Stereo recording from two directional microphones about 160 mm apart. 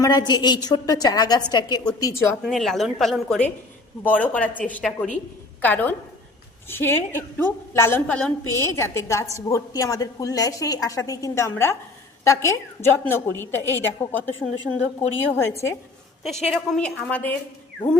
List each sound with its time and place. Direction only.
0.0 s a woman's voice: 25° left (ahead or behind)
2.4 s a woman's voice: centre (ahead or behind); by 15.7 s 15° left (ahead or behind)
16.2 s a woman's voice: centre (ahead or behind)